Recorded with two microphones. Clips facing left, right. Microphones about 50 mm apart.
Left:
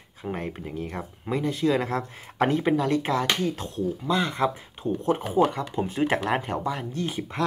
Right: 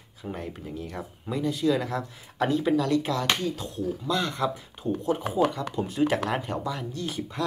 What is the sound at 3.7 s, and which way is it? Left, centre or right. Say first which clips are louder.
Speech: left 3 dB; left.